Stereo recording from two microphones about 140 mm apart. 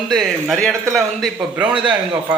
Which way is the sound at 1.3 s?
10° right (ahead or behind).